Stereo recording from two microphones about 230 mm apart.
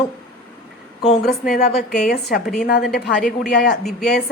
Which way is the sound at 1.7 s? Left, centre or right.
Centre.